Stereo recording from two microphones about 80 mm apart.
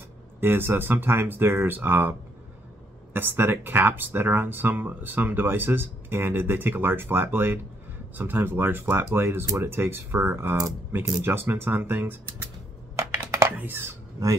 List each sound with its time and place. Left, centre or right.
0.4 s speech: right
12.9 s computer keyboard: right
13.5 s speech: right